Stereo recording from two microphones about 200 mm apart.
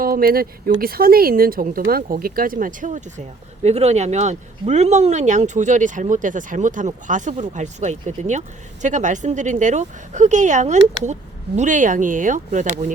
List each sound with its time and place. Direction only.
0.0 s speech: 45° right (ahead or behind)